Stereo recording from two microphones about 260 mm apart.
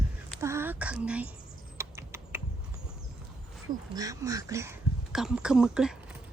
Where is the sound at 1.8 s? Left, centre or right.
Centre.